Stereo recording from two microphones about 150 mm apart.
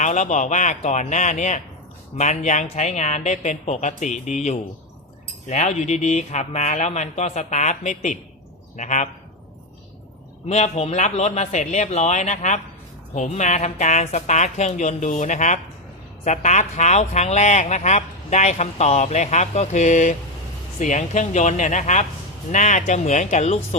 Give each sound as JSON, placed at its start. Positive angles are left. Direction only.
{"t": 0.0, "sound": "speech", "side_deg": 55}
{"t": 5.5, "sound": "speech", "side_deg": 50}
{"t": 10.5, "sound": "speech", "side_deg": 45}